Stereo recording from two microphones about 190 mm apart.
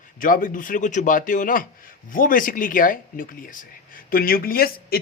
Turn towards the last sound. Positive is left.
turn(degrees=50)  # may be behind; listen again after turning